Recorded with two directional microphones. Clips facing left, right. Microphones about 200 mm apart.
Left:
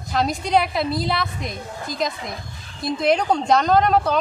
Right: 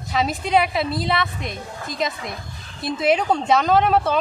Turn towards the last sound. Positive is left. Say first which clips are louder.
# even
turn(degrees=-5)  # may be behind; listen again after turning